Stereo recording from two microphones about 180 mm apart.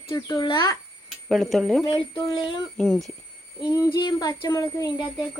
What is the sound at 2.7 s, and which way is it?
Speech, centre (ahead or behind).